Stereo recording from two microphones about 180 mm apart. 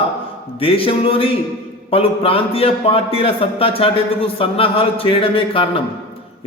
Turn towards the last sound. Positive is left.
turn(degrees=30)  # may be behind; listen again after turning